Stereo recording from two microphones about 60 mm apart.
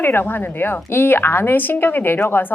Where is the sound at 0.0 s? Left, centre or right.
Left.